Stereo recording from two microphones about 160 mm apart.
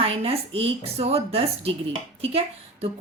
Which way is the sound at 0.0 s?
40° right (ahead or behind).